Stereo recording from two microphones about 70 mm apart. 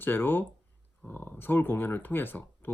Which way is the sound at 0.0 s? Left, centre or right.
Left.